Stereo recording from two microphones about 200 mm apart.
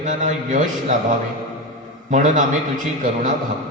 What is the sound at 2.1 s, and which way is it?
Speech, 40° right (ahead or behind).